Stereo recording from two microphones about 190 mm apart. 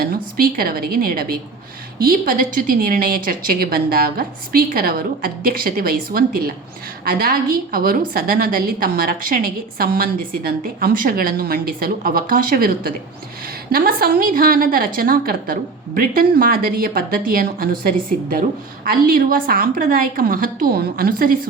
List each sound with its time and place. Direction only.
0.0 s a woman's voice: 50° right (ahead or behind)